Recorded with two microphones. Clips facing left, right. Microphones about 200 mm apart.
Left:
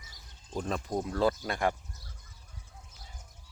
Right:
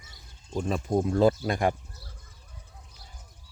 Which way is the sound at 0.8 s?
25° right (ahead or behind).